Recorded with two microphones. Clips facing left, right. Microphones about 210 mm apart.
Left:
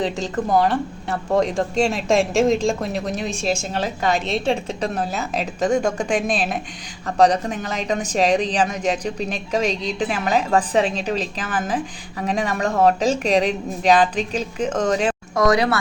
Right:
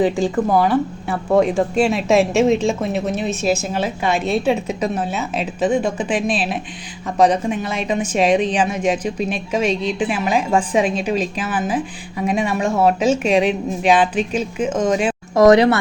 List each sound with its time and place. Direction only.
0.0 s a woman's voice: 5° right (ahead or behind)
15.4 s speech: 25° right (ahead or behind)